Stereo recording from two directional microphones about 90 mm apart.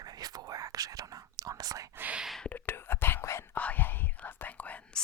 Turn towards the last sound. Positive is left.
turn(degrees=15)  # may be behind; listen again after turning